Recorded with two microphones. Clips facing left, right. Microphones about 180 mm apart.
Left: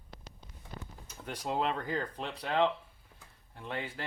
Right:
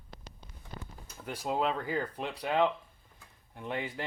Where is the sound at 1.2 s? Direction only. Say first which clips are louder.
Right 2 dB; 5° right (ahead or behind).